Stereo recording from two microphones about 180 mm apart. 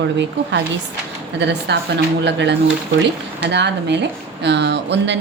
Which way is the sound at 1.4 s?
75° right (ahead or behind).